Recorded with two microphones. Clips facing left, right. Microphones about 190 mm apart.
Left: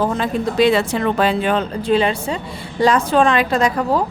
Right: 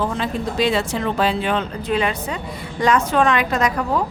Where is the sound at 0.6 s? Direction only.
60° left (ahead or behind); by 4.0 s 30° left (ahead or behind).